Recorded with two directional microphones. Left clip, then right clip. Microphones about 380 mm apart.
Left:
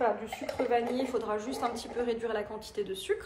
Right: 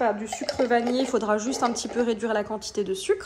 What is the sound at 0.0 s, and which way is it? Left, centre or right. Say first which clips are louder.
A woman's voice: right 5 dB; right.